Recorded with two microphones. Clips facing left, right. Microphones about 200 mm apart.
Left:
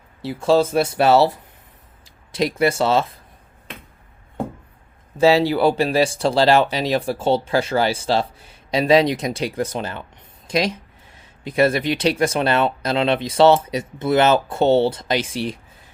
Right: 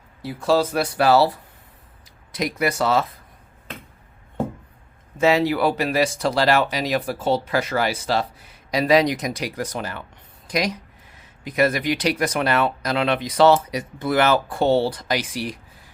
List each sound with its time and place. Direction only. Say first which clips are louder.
0.2 s speech: left 3 dB; 25° left (ahead or behind)
2.3 s speech: left 4 dB; 30° left (ahead or behind)
5.1 s speech: left 3 dB; 30° left (ahead or behind)